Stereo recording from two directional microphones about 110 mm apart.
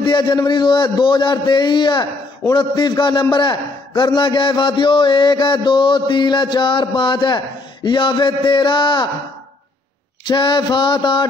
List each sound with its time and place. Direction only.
0.0 s a man's voice: 45° left (ahead or behind)
10.2 s a man's voice: 45° left (ahead or behind)